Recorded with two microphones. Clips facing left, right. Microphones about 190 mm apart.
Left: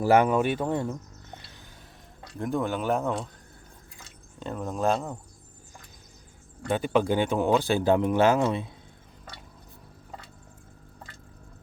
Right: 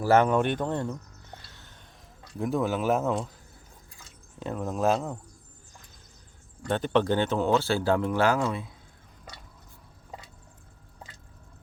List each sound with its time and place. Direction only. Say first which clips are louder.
0.0 s speech: left 1 dB; 10° left (ahead or behind)
2.4 s speech: right 1 dB; centre (ahead or behind)
4.4 s speech: right 1 dB; centre (ahead or behind)
6.7 s speech: even; 10° left (ahead or behind)